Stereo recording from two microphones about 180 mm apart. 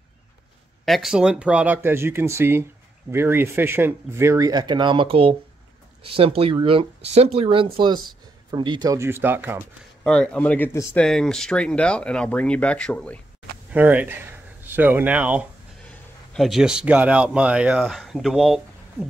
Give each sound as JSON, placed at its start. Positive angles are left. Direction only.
{"t": 0.8, "sound": "speech", "side_deg": 0}
{"t": 10.0, "sound": "speech", "side_deg": 5}
{"t": 11.0, "sound": "speech", "side_deg": 5}
{"t": 13.7, "sound": "a man's voice", "side_deg": -10}